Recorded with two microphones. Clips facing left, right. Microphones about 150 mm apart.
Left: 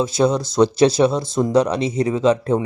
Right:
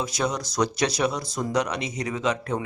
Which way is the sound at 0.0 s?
30° left (ahead or behind).